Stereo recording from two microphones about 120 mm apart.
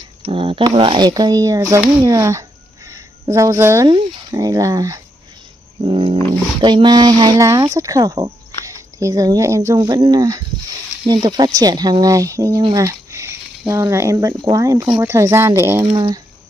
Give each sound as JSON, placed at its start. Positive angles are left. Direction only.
{"t": 0.2, "sound": "speech", "side_deg": -50}
{"t": 2.9, "sound": "a sound", "side_deg": -25}
{"t": 3.8, "sound": "speech", "side_deg": -35}
{"t": 5.9, "sound": "speech", "side_deg": -45}
{"t": 15.8, "sound": "speech", "side_deg": -40}